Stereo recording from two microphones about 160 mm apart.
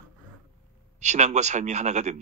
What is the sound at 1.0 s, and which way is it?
Speech, 45° right (ahead or behind).